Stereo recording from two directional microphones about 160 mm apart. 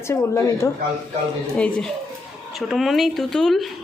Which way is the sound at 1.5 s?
5° left (ahead or behind).